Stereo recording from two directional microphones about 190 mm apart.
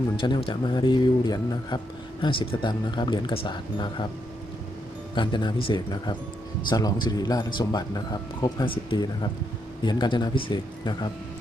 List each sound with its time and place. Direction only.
0.2 s speech: 25° left (ahead or behind)
5.1 s speech: 25° left (ahead or behind)